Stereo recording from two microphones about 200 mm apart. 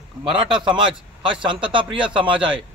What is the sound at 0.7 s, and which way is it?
A man's voice, 25° right (ahead or behind).